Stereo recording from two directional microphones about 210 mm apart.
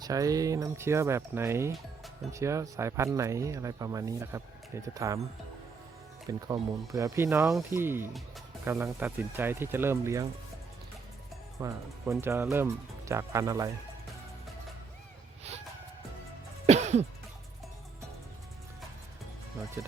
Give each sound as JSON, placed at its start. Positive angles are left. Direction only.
{"t": 0.0, "sound": "speech", "side_deg": -15}
{"t": 6.2, "sound": "speech", "side_deg": -15}
{"t": 11.6, "sound": "speech", "side_deg": -15}
{"t": 16.6, "sound": "music", "side_deg": -30}